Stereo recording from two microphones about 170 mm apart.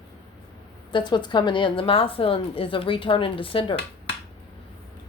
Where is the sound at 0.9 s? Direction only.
25° left (ahead or behind).